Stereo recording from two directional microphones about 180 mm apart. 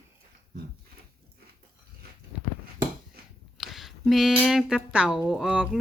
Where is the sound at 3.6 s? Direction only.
Centre (ahead or behind).